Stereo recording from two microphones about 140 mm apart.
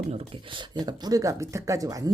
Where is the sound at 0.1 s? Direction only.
40° right (ahead or behind).